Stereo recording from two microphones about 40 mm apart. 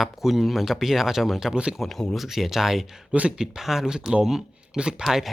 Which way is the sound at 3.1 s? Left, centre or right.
Right.